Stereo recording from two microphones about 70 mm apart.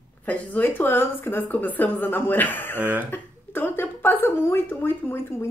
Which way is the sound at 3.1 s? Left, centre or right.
Left.